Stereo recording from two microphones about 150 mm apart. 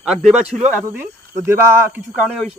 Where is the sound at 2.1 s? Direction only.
5° left (ahead or behind).